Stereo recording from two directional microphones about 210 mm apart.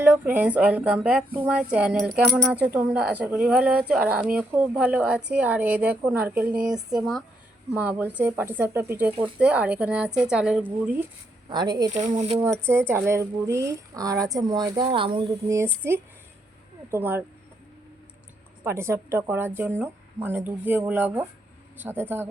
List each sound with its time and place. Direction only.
0.0 s a woman's voice: 10° right (ahead or behind)
11.4 s speech: 20° right (ahead or behind)
11.9 s speech: 35° right (ahead or behind)
12.6 s a woman's voice: 10° right (ahead or behind)
18.6 s a woman's voice: 10° right (ahead or behind)